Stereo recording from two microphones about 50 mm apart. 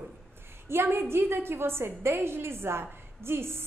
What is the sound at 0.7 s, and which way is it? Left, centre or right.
A woman's voice, right.